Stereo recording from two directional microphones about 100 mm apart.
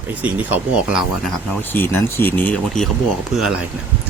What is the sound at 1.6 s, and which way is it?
Speech, 20° left (ahead or behind).